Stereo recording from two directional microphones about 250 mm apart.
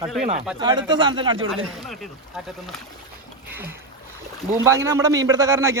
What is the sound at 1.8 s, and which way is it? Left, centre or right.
Speech, centre.